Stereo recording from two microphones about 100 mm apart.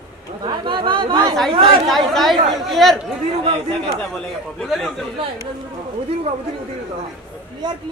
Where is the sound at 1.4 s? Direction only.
65° right (ahead or behind).